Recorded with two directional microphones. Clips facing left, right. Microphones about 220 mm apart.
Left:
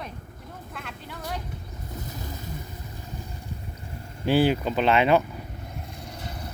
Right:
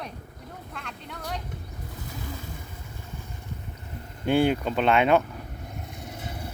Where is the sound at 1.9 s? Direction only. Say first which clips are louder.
Left 1 dB; 40° left (ahead or behind).